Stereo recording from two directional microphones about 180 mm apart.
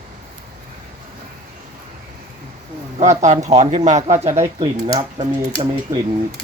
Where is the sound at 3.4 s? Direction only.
40° right (ahead or behind).